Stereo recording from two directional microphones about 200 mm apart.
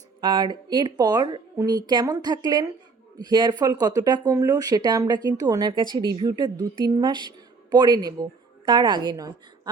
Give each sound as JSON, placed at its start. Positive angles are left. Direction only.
{"t": 0.2, "sound": "speech", "side_deg": -20}